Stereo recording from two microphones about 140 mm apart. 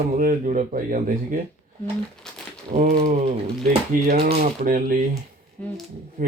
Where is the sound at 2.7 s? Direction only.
60° right (ahead or behind).